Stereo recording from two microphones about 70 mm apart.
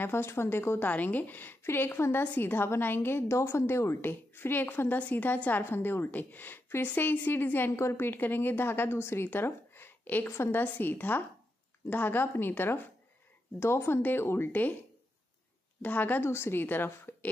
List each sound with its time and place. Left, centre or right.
0.0 s a woman's voice: left
10.6 s a woman's voice: left
15.8 s a woman's voice: left